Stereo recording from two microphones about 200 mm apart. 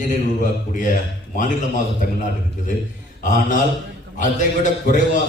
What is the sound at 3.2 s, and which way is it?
A man's voice, 40° left (ahead or behind).